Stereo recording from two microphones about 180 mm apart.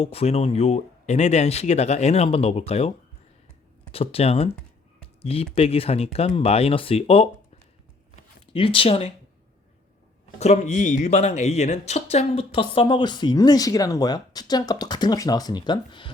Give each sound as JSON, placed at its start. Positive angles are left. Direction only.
{"t": 0.0, "sound": "speech", "side_deg": 35}
{"t": 3.9, "sound": "speech", "side_deg": 35}
{"t": 8.5, "sound": "speech", "side_deg": 30}
{"t": 10.4, "sound": "speech", "side_deg": 40}